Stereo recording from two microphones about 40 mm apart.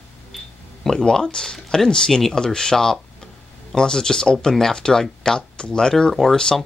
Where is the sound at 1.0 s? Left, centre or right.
Centre.